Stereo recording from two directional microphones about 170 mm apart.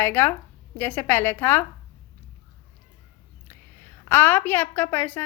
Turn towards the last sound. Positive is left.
turn(degrees=10)  # may be behind; listen again after turning